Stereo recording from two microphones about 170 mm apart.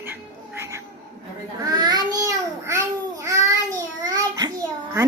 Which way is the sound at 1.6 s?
25° right (ahead or behind).